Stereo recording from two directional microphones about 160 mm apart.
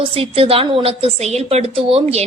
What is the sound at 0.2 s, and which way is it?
A woman's voice, 35° right (ahead or behind).